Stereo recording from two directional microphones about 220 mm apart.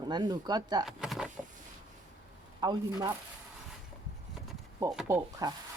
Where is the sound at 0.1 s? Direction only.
20° right (ahead or behind).